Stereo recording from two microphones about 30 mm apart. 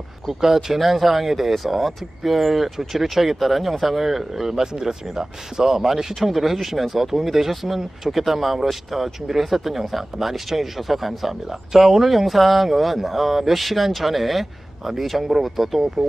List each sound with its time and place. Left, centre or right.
0.4 s speech: centre
0.7 s speech: centre